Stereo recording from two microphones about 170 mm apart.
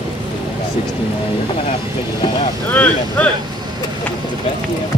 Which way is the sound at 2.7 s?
10° left (ahead or behind).